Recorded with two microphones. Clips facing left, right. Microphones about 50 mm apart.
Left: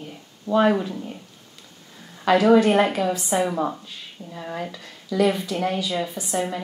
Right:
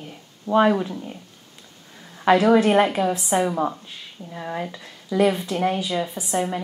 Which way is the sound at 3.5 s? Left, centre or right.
Centre.